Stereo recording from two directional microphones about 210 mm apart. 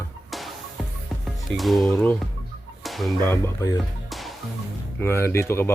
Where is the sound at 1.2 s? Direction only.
Centre (ahead or behind).